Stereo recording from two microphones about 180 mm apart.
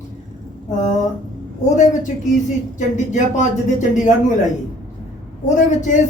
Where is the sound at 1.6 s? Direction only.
45° left (ahead or behind).